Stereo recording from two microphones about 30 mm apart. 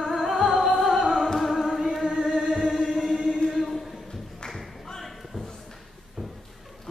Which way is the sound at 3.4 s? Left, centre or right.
Centre.